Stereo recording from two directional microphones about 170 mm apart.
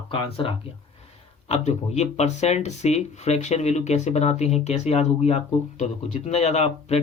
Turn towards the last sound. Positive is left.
turn(degrees=40)  # may be behind; listen again after turning